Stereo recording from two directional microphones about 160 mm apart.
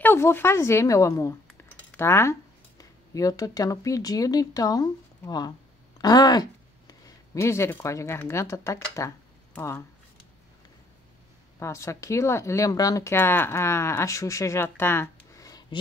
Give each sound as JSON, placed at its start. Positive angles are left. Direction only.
{"t": 0.0, "sound": "speech", "side_deg": 15}
{"t": 1.5, "sound": "keys jangling", "side_deg": 10}
{"t": 2.8, "sound": "speech", "side_deg": 20}
{"t": 11.6, "sound": "speech", "side_deg": 20}